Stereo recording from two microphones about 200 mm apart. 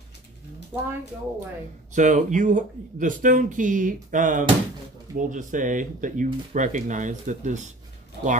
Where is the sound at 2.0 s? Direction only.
40° right (ahead or behind).